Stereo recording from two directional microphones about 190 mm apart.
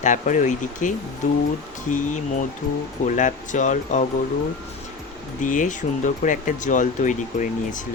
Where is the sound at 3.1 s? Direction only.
40° left (ahead or behind).